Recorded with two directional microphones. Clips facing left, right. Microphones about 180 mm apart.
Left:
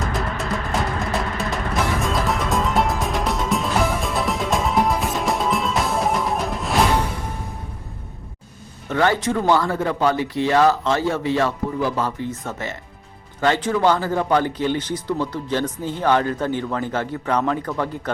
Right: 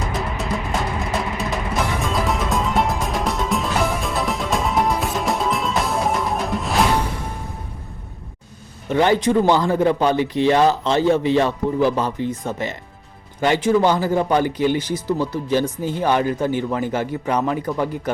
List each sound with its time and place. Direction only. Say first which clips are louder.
0.0 s music: even; centre (ahead or behind)
8.9 s a man's voice: right 3 dB; 20° right (ahead or behind)